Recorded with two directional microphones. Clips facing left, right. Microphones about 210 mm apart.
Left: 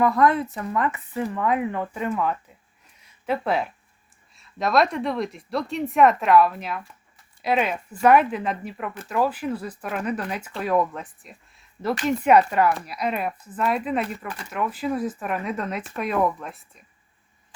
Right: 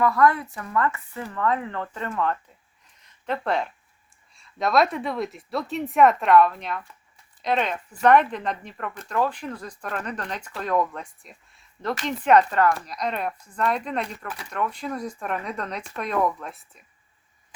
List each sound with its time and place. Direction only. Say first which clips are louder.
0.0 s speech: left 1 dB; 20° left (ahead or behind)
3.0 s a sound: left 3 dB; 5° left (ahead or behind)
4.4 s speech: even; centre (ahead or behind)